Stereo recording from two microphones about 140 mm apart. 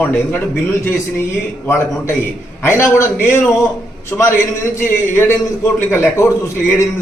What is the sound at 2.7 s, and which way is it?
A man's voice, 20° left (ahead or behind).